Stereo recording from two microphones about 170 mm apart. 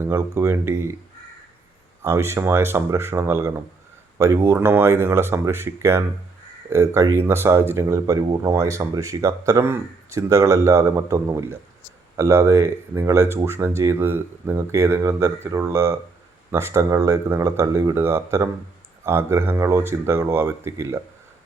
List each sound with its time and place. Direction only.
0.0 s speech: 15° right (ahead or behind)
2.0 s speech: 15° right (ahead or behind)